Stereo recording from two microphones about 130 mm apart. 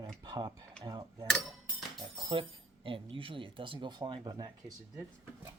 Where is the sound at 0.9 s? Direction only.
30° right (ahead or behind).